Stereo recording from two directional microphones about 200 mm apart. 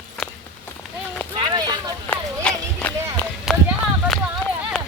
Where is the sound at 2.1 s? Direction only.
5° left (ahead or behind).